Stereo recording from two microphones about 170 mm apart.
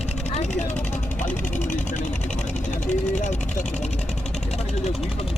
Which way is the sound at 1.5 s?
45° left (ahead or behind).